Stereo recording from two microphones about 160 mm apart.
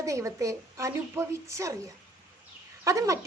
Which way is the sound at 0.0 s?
20° right (ahead or behind).